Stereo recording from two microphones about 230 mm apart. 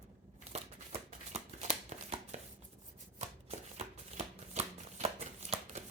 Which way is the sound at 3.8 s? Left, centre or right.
Right.